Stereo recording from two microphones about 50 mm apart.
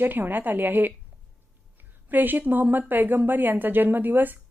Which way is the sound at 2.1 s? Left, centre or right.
Right.